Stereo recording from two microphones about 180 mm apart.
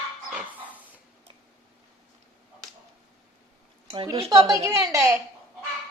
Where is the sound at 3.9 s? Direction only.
30° right (ahead or behind).